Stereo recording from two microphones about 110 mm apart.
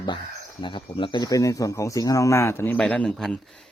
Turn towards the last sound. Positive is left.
turn(degrees=5)  # may be behind; listen again after turning